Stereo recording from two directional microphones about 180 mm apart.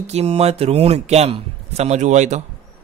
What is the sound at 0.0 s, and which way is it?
A man's voice, 35° right (ahead or behind).